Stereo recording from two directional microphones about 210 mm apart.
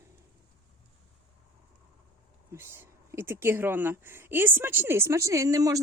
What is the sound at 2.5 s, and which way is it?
A woman's voice, 10° right (ahead or behind).